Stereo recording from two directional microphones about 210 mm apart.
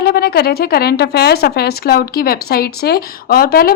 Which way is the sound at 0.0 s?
45° left (ahead or behind).